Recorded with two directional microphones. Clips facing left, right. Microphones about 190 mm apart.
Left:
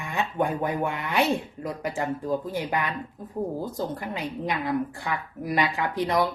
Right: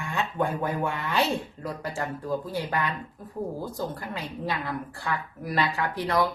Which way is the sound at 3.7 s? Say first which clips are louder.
Left 2 dB; 20° left (ahead or behind).